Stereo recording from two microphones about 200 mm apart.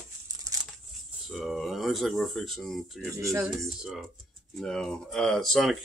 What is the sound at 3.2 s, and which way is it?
Speech, 15° right (ahead or behind).